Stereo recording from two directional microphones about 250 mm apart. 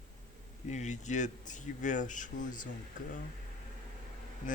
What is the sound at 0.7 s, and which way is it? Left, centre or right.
Speech, left.